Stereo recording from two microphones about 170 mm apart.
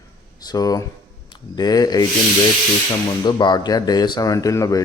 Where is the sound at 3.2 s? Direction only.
25° left (ahead or behind).